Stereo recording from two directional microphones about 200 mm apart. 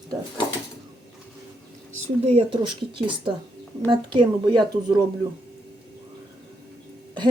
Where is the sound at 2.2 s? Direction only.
30° right (ahead or behind).